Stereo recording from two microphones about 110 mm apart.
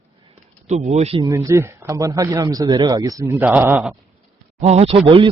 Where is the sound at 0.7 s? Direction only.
85° right.